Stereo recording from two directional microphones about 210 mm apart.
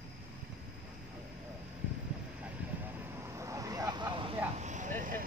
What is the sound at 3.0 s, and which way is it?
Vehicle, 10° right (ahead or behind).